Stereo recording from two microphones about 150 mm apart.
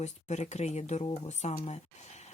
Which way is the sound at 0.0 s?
50° left (ahead or behind).